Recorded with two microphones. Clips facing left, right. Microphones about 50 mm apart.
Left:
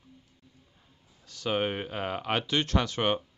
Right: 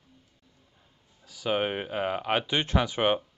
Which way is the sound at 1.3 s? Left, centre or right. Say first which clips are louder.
Right 1 dB; centre.